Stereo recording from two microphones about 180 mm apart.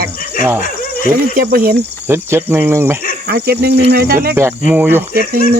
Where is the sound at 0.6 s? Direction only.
50° left (ahead or behind).